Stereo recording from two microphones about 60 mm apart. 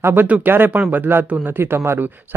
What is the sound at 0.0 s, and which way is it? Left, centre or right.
Speech, right.